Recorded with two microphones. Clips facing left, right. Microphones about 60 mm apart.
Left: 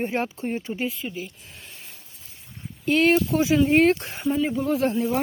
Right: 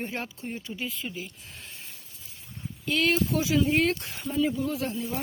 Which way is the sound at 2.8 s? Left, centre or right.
Left.